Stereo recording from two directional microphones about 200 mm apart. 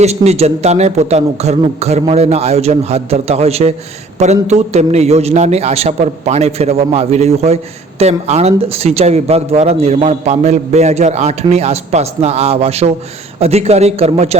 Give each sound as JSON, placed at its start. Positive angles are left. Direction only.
{"t": 0.0, "sound": "a man's voice", "side_deg": -30}